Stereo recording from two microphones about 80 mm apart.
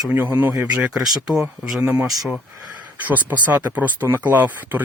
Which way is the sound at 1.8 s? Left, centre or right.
Right.